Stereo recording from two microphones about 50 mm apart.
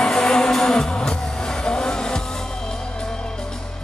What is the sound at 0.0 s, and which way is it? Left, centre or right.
Music, centre.